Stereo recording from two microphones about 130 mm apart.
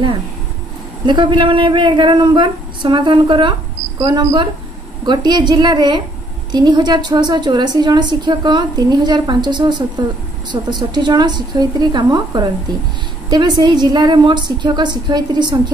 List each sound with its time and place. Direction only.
1.0 s a woman's voice: 40° right (ahead or behind)